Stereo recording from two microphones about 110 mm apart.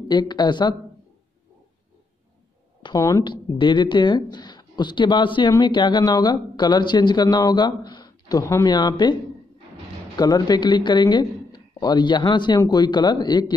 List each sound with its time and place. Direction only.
0.1 s speech: 40° left (ahead or behind)
3.0 s speech: 30° left (ahead or behind)
3.3 s speech: 45° left (ahead or behind)
10.1 s speech: 35° left (ahead or behind)